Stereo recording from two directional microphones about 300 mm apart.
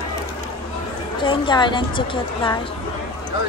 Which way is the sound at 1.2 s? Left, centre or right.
Centre.